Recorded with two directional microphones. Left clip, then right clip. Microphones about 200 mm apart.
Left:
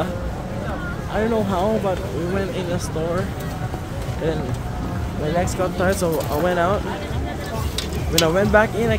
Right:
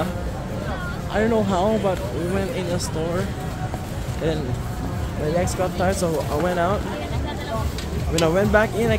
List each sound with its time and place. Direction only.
1.1 s speech: 10° right (ahead or behind)
5.4 s speech: 5° left (ahead or behind)
8.2 s speech: centre (ahead or behind)